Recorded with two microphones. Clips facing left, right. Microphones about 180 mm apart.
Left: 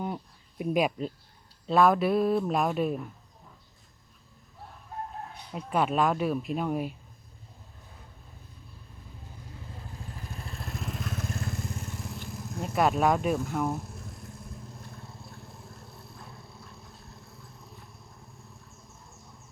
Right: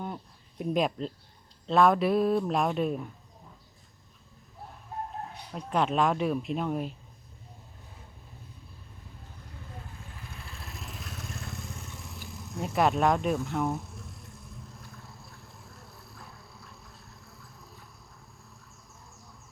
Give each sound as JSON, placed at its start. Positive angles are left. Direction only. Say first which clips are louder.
{"t": 0.0, "sound": "a sound", "louder": "left 3 dB", "side_deg": 5}
{"t": 1.6, "sound": "speech", "louder": "even", "side_deg": 0}
{"t": 5.5, "sound": "speech", "louder": "left 1 dB", "side_deg": 0}
{"t": 10.0, "sound": "vehicle", "louder": "left 4 dB", "side_deg": 40}
{"t": 10.5, "sound": "vehicle", "louder": "left 9 dB", "side_deg": 0}
{"t": 19.1, "sound": "a sound", "louder": "left 1 dB", "side_deg": 0}